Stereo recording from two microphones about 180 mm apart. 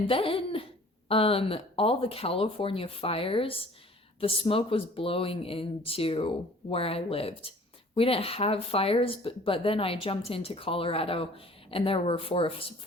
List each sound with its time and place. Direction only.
0.1 s speech: 30° left (ahead or behind)